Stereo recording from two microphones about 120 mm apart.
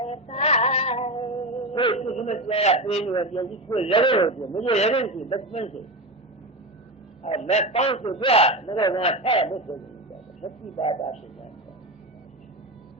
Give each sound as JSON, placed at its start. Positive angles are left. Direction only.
{"t": 0.0, "sound": "female singing", "side_deg": 60}
{"t": 1.7, "sound": "a man's voice", "side_deg": 45}
{"t": 2.0, "sound": "a man's voice", "side_deg": 65}
{"t": 7.2, "sound": "a man's voice", "side_deg": 55}